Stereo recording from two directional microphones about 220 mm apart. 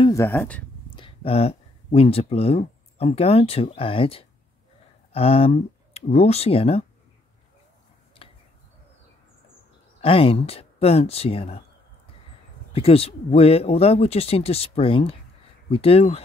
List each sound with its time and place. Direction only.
0.0 s speech: 15° left (ahead or behind)
0.9 s speech: 25° left (ahead or behind)
8.2 s a sound: 25° left (ahead or behind)
10.0 s speech: 25° left (ahead or behind)
12.7 s speech: 25° left (ahead or behind)